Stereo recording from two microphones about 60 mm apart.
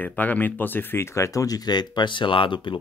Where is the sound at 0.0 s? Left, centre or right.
Left.